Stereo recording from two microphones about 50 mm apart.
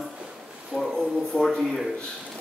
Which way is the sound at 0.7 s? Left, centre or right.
Left.